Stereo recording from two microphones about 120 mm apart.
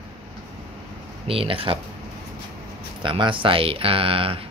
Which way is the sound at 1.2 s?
50° right (ahead or behind).